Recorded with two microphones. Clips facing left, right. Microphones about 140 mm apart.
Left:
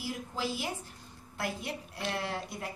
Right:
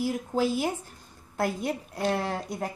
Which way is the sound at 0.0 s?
50° right (ahead or behind).